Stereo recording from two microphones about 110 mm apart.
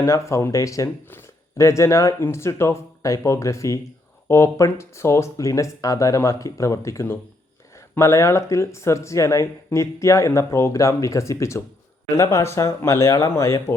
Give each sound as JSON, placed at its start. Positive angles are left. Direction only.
{"t": 0.0, "sound": "speech", "side_deg": 25}